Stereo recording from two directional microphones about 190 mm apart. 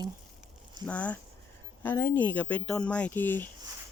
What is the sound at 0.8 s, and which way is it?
Speech, 5° left (ahead or behind).